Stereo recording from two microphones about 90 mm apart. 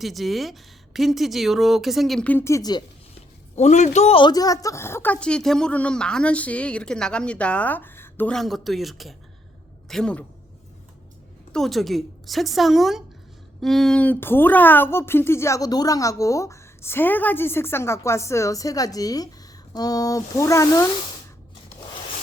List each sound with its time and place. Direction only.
0.0 s a woman's voice: centre (ahead or behind)
2.4 s speech: 35° left (ahead or behind)
4.3 s speech: 45° left (ahead or behind)
5.1 s a woman's voice: 10° left (ahead or behind)
8.3 s a woman's voice: centre (ahead or behind)
11.5 s a woman's voice: centre (ahead or behind)
14.0 s a woman's voice: 20° left (ahead or behind)